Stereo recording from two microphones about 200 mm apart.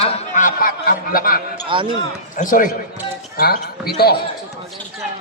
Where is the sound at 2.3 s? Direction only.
40° left (ahead or behind).